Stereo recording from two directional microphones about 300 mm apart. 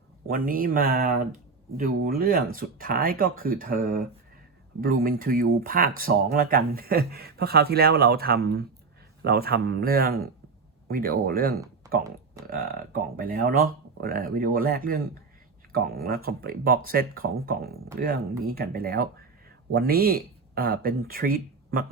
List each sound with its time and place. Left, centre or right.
0.3 s speech: right